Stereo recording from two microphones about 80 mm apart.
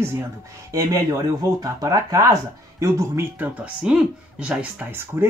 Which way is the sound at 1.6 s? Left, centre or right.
Right.